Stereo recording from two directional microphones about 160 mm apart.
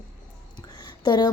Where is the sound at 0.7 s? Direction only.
25° left (ahead or behind).